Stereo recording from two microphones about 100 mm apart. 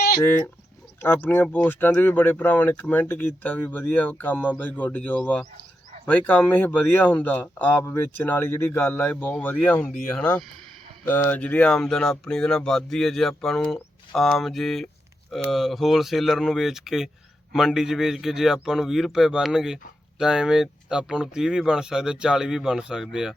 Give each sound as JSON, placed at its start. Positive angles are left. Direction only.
{"t": 0.3, "sound": "speech", "side_deg": 20}